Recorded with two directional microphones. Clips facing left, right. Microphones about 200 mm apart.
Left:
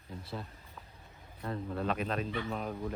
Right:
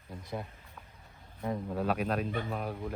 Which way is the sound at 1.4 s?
10° right (ahead or behind).